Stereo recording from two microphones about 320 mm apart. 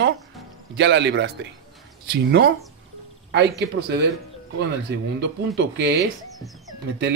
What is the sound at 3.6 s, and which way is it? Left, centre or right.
Speech, right.